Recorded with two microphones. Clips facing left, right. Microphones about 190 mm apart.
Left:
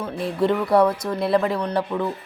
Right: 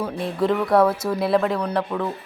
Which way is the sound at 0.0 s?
Centre (ahead or behind).